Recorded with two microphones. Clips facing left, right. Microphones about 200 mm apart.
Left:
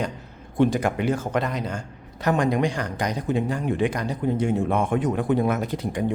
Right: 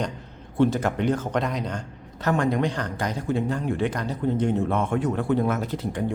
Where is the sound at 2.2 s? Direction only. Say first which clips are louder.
Left 1 dB; 15° left (ahead or behind).